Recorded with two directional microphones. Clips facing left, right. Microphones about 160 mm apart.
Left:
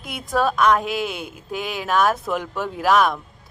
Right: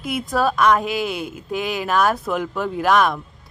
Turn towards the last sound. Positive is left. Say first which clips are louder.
# right 1 dB
turn(degrees=0)  # may be behind; listen again after turning